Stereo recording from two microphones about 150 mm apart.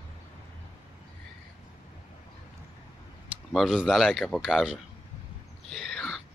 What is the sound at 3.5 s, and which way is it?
A man's voice, centre (ahead or behind).